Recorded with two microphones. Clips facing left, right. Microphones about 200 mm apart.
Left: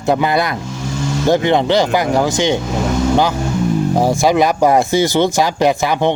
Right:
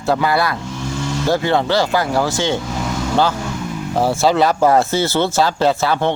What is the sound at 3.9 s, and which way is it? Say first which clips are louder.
Speech: right 1 dB; 15° left (ahead or behind).